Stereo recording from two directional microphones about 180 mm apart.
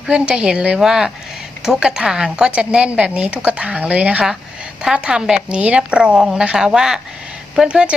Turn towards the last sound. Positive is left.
turn(degrees=-5)  # may be behind; listen again after turning